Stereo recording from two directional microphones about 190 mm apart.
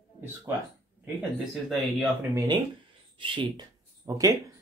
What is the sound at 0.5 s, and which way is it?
Speech, 15° right (ahead or behind).